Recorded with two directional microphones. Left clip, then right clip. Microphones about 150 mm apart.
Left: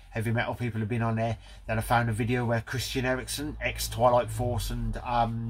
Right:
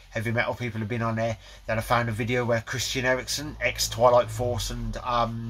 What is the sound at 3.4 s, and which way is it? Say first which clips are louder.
Speech: right 5 dB; 10° right (ahead or behind).